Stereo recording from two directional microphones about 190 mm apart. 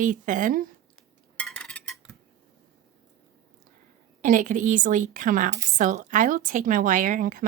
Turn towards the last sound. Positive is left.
turn(degrees=-45)  # may be behind; listen again after turning